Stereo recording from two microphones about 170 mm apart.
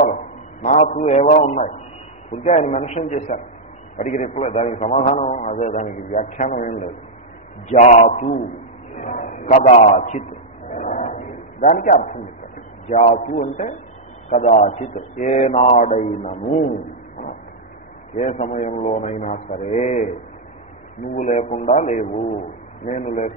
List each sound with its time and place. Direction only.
0.7 s a man's voice: 50° left (ahead or behind)
7.8 s a man's voice: 50° left (ahead or behind)
10.7 s a sound: 50° left (ahead or behind)
12.8 s a man's voice: 45° left (ahead or behind)
18.1 s a man's voice: 45° left (ahead or behind)
21.1 s a man's voice: 45° left (ahead or behind)